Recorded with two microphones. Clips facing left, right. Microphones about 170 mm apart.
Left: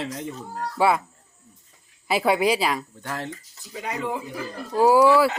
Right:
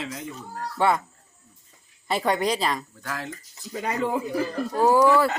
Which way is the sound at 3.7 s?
45° right (ahead or behind).